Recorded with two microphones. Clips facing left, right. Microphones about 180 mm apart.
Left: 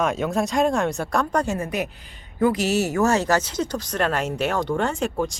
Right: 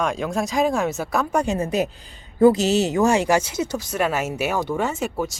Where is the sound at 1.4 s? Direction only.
20° right (ahead or behind).